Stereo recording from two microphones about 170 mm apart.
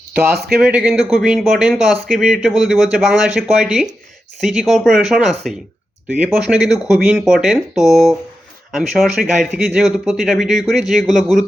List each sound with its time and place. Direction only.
0.1 s a man's voice: 65° right (ahead or behind)
0.4 s speech: centre (ahead or behind)